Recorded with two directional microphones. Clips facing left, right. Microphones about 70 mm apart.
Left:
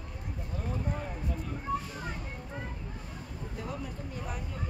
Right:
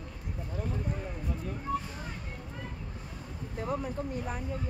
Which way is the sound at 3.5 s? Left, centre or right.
Right.